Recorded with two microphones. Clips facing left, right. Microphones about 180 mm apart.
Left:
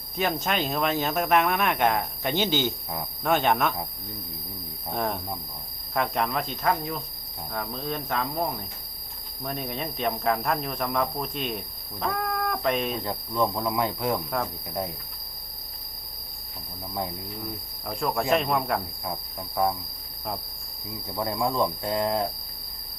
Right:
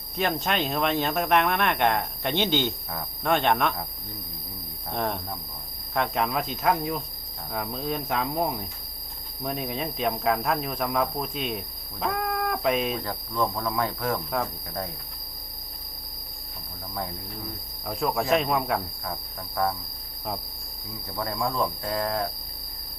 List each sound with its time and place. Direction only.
0.2 s speech: centre (ahead or behind)
4.9 s speech: centre (ahead or behind)
13.0 s speech: 15° left (ahead or behind)
14.2 s speech: centre (ahead or behind)
14.7 s speech: 20° left (ahead or behind)
16.9 s speech: 15° left (ahead or behind)
17.8 s speech: centre (ahead or behind)
19.0 s speech: 20° left (ahead or behind)
21.1 s speech: 15° left (ahead or behind)